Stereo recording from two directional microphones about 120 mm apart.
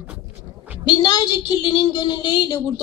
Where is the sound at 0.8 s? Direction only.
35° left (ahead or behind).